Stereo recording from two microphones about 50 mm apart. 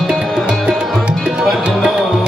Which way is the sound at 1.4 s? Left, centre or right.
Centre.